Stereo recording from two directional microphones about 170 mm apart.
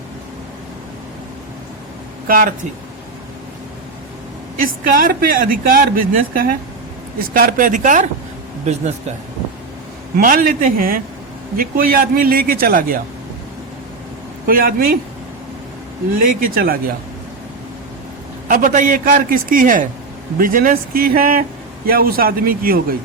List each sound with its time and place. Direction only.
2.2 s speech: 55° right (ahead or behind)
4.5 s a man's voice: 55° right (ahead or behind)
10.2 s a man's voice: 55° right (ahead or behind)
14.4 s a man's voice: 60° right (ahead or behind)
16.1 s a man's voice: 55° right (ahead or behind)
18.4 s a man's voice: 50° right (ahead or behind)